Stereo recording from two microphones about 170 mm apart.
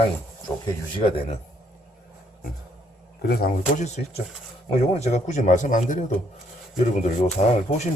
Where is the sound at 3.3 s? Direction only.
60° left (ahead or behind).